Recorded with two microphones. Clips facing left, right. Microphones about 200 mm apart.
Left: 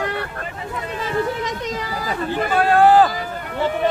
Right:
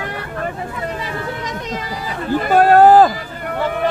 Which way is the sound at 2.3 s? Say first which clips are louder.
Right 6 dB; 45° right (ahead or behind).